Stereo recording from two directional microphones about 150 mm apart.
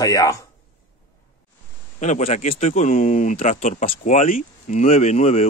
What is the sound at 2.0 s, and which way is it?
Speech, 50° left (ahead or behind).